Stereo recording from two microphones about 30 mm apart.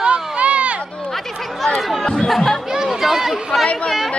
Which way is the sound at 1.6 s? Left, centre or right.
Centre.